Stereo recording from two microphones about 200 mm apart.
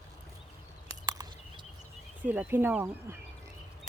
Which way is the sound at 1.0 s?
15° right (ahead or behind).